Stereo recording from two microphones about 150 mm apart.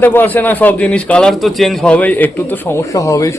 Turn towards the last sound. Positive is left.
turn(degrees=20)  # may be behind; listen again after turning